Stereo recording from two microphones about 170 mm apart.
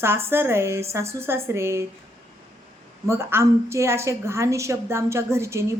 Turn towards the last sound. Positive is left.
turn(degrees=-15)  # may be behind; listen again after turning